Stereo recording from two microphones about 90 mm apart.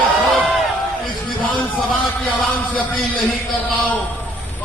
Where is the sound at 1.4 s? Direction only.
65° left (ahead or behind).